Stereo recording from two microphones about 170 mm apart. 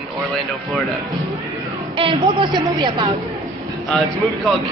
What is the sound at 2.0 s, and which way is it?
A woman's voice, 30° right (ahead or behind).